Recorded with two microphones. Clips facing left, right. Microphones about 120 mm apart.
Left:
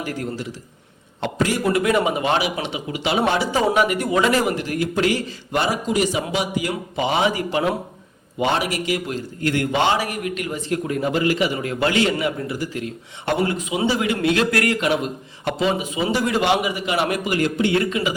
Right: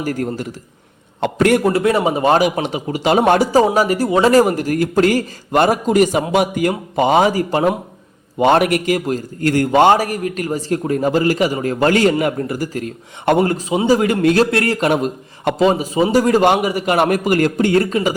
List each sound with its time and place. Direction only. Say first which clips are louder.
0.0 s a man's voice: right 6 dB; 45° right (ahead or behind)
1.6 s a man's voice: right 4 dB; 30° right (ahead or behind)
8.4 s a man's voice: right 8 dB; 55° right (ahead or behind)
14.5 s speech: right 3 dB; 30° right (ahead or behind)
14.8 s a man's voice: right 4 dB; 45° right (ahead or behind)